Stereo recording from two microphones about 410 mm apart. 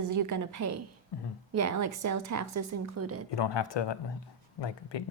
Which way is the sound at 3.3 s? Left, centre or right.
Left.